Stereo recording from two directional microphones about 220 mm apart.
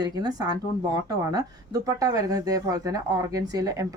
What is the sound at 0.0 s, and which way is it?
Speech, 20° right (ahead or behind).